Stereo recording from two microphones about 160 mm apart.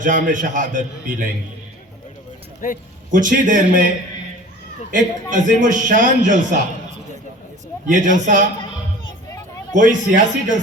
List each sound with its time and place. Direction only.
0.0 s a man's voice: 55° right (ahead or behind)
3.1 s a man's voice: 55° right (ahead or behind)
4.9 s a man's voice: 55° right (ahead or behind)
7.9 s a man's voice: 55° right (ahead or behind)
9.7 s a man's voice: 55° right (ahead or behind)